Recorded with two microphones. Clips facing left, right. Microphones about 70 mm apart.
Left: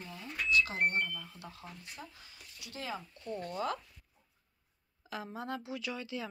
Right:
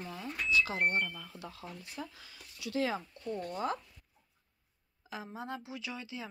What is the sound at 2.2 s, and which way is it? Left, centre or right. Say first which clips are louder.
Speech: right 8 dB; right.